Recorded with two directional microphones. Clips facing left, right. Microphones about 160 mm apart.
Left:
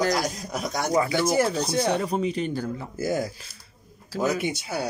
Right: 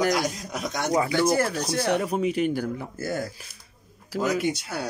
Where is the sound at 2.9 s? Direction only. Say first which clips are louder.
Left 7 dB; 15° left (ahead or behind).